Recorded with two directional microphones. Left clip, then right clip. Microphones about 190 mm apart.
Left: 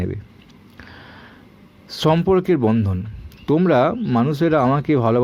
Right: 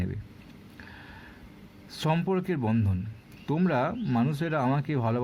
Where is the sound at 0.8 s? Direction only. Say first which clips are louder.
Left 6 dB; 20° left (ahead or behind).